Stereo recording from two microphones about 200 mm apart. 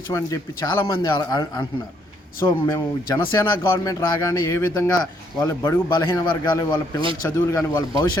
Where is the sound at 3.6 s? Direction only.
15° left (ahead or behind).